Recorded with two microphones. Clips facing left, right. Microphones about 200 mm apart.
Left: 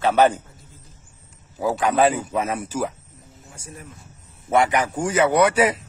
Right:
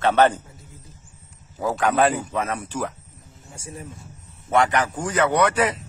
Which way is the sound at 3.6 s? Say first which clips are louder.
Right 4 dB; 30° right (ahead or behind).